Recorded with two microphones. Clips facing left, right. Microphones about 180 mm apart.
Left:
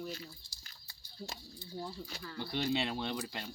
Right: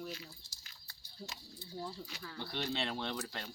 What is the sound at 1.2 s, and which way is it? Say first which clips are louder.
Speech: left 2 dB; 35° left (ahead or behind).